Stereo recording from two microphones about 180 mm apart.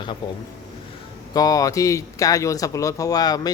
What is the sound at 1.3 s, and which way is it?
Speech, 20° left (ahead or behind).